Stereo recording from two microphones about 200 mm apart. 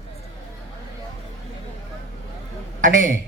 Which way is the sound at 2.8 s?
40° right (ahead or behind).